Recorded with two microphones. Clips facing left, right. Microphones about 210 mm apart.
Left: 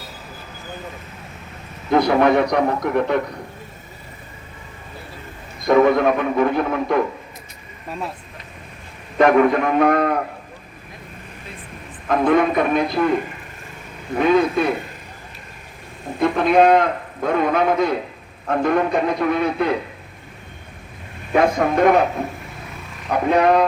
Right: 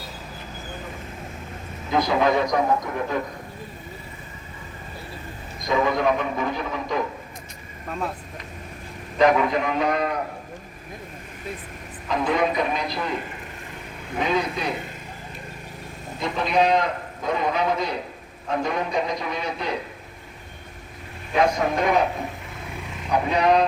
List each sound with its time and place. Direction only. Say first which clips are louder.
1.9 s a man's voice: left 5 dB; 60° left (ahead or behind)
5.6 s a man's voice: left 7 dB; 60° left (ahead or behind)
7.9 s speech: even; 5° left (ahead or behind)
9.1 s a man's voice: left 5 dB; 55° left (ahead or behind)
12.0 s a man's voice: left 6 dB; 55° left (ahead or behind)
14.2 s a man's voice: left 8 dB; 55° left (ahead or behind)
16.1 s a man's voice: left 7 dB; 60° left (ahead or behind)
21.3 s a man's voice: left 4 dB; 55° left (ahead or behind)
23.1 s a man's voice: left 4 dB; 55° left (ahead or behind)